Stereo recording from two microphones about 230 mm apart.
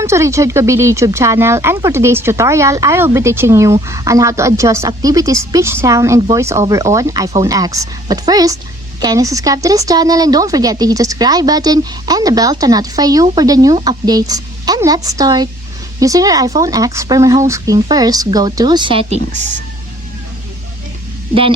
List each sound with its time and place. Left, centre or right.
0.0 s speech: centre; by 19.5 s right